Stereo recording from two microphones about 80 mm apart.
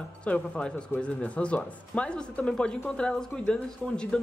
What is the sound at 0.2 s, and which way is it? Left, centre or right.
A woman's voice, centre.